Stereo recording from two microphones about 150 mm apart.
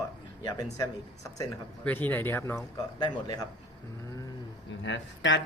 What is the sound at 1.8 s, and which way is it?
Speech, 10° left (ahead or behind).